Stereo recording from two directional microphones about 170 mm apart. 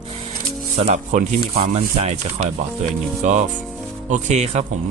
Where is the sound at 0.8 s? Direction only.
45° right (ahead or behind).